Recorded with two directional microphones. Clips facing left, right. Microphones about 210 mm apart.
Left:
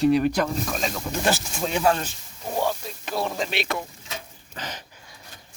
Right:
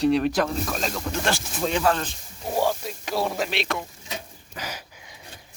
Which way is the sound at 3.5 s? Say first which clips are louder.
Even; centre (ahead or behind).